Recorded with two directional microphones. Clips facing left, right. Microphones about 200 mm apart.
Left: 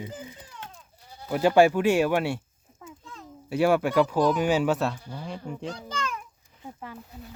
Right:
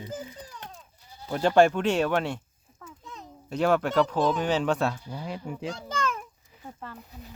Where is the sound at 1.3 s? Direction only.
10° left (ahead or behind).